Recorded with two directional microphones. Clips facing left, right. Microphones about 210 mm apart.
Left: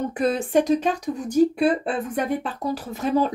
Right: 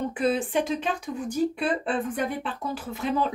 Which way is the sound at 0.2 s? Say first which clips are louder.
Left 4 dB; 45° left (ahead or behind).